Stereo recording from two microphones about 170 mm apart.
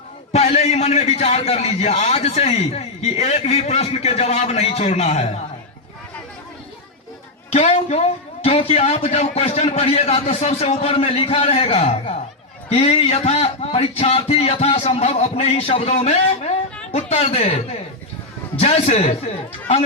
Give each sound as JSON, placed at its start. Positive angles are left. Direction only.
{"t": 0.3, "sound": "a man's voice", "side_deg": 40}
{"t": 7.5, "sound": "a woman's voice", "side_deg": 40}
{"t": 18.6, "sound": "a man's voice", "side_deg": 40}